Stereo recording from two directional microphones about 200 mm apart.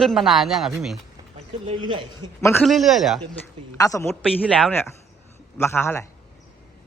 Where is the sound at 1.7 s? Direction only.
25° right (ahead or behind).